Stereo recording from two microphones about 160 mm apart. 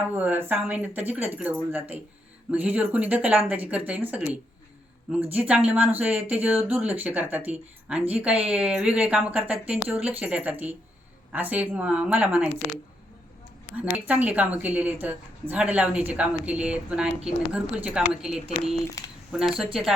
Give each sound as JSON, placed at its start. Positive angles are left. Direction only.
{"t": 0.2, "sound": "speech", "side_deg": -10}
{"t": 5.2, "sound": "speech", "side_deg": -10}
{"t": 13.9, "sound": "a woman's voice", "side_deg": -10}
{"t": 19.0, "sound": "speech", "side_deg": 20}
{"t": 19.3, "sound": "a woman's voice", "side_deg": -5}